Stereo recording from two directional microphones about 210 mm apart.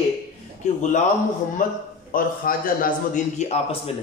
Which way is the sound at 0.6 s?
35° left (ahead or behind).